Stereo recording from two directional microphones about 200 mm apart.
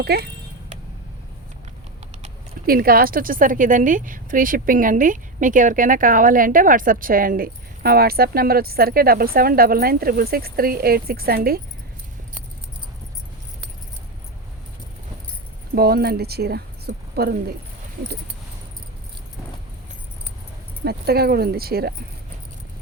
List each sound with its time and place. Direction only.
0.0 s a woman's voice: 55° right (ahead or behind)
2.6 s a woman's voice: 45° right (ahead or behind)
15.7 s speech: 50° right (ahead or behind)
20.8 s a woman's voice: 50° right (ahead or behind)